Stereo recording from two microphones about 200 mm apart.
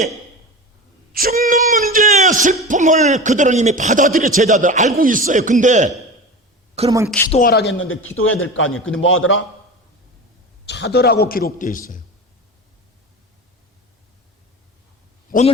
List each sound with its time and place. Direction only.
1.1 s a sound: 50° right (ahead or behind)
2.6 s a man's voice: 40° right (ahead or behind)
7.3 s a man's voice: 50° left (ahead or behind); by 9.4 s 75° left (ahead or behind)
10.7 s a man's voice: 55° left (ahead or behind); by 11.9 s 40° left (ahead or behind)
15.3 s a man's voice: 35° left (ahead or behind)